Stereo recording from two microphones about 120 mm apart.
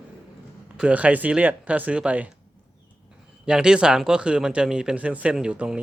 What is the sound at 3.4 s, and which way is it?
A man's voice, 5° right (ahead or behind).